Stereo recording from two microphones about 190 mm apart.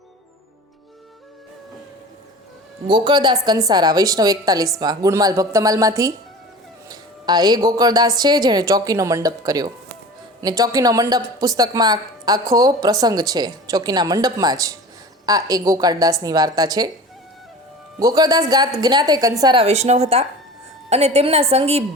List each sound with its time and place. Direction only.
2.8 s speech: 25° right (ahead or behind)
6.8 s music: 20° right (ahead or behind)
7.7 s speech: 20° right (ahead or behind)
18.0 s speech: 20° right (ahead or behind)
19.6 s a woman's voice: 35° right (ahead or behind)